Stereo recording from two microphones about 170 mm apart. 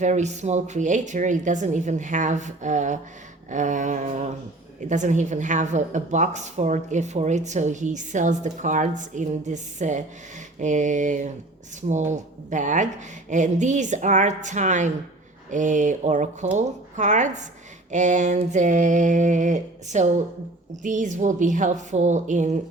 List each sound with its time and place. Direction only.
0.0 s a woman's voice: 45° right (ahead or behind)